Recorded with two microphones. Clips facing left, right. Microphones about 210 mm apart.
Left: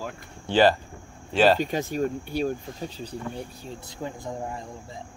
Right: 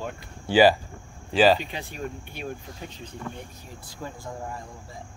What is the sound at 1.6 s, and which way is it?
Speech, 45° left (ahead or behind).